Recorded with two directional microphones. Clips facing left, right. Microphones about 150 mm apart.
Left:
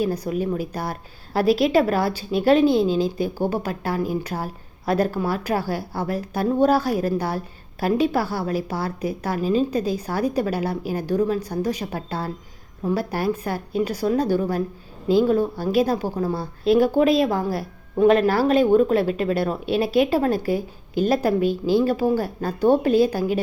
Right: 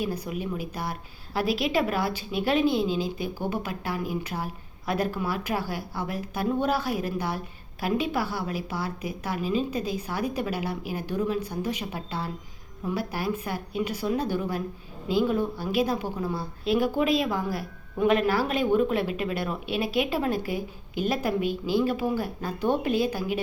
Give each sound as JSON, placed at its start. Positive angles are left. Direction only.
{"t": 0.0, "sound": "a woman's voice", "side_deg": 40}